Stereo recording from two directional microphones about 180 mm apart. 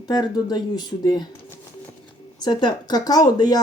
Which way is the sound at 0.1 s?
20° left (ahead or behind).